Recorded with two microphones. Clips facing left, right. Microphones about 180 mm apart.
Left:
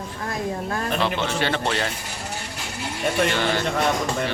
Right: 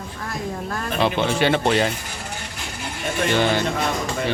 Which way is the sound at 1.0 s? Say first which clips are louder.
Right 8 dB; 15° right (ahead or behind).